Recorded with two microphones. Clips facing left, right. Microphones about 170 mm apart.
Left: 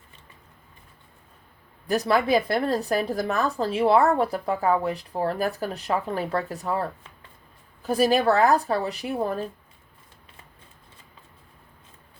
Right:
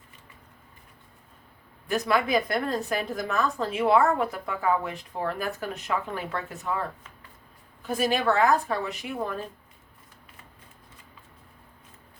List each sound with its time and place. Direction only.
1.9 s a woman's voice: 35° left (ahead or behind)